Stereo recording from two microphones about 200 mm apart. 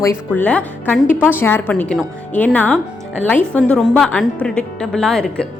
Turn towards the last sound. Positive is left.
turn(degrees=0)  # may be behind; listen again after turning